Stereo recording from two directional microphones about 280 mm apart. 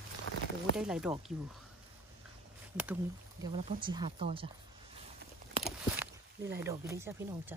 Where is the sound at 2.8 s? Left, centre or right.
Centre.